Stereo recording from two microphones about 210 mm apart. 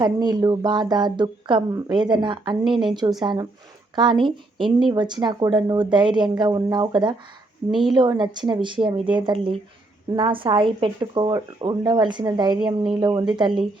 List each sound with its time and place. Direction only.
0.0 s a woman's voice: 20° right (ahead or behind)
7.7 s speech: centre (ahead or behind)
7.9 s a woman's voice: 20° right (ahead or behind)